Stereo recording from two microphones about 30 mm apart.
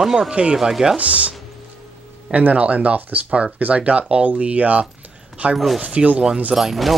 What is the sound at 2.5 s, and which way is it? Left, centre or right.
Speech, right.